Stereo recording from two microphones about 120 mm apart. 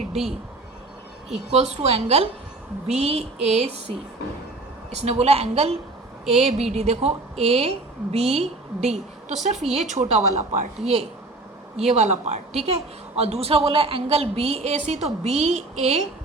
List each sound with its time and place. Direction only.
1.5 s a woman's voice: 65° right (ahead or behind)
9.4 s a woman's voice: 75° right (ahead or behind)